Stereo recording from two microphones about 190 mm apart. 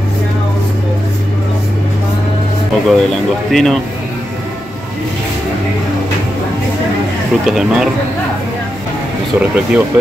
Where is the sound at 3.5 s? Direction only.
Centre (ahead or behind).